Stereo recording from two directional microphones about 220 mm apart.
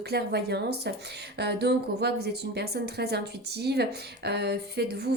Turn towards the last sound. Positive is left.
turn(degrees=-50)  # may be behind; listen again after turning